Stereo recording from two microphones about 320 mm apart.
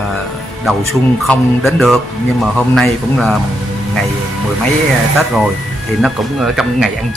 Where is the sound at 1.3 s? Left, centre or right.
Centre.